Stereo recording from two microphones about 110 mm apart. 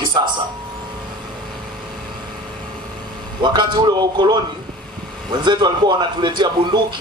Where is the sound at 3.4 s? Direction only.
40° right (ahead or behind).